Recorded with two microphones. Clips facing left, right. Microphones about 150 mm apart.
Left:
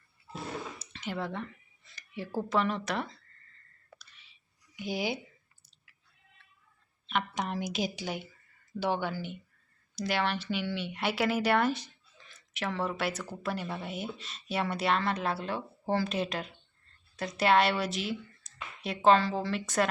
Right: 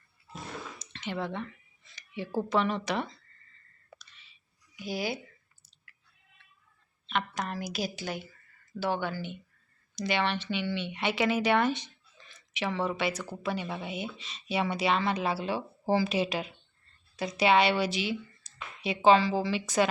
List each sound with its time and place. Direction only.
0.8 s a sound: 5° left (ahead or behind)
2.0 s speech: centre (ahead or behind)
4.8 s a woman's voice: 15° left (ahead or behind)
7.1 s a woman's voice: 10° left (ahead or behind)